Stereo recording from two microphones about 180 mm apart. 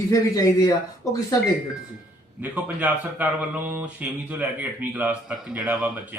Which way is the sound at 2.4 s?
10° right (ahead or behind).